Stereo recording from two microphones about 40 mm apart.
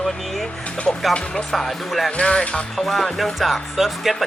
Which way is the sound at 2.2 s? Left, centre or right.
Left.